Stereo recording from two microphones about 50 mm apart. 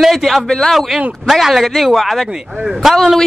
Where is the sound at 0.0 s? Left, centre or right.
Centre.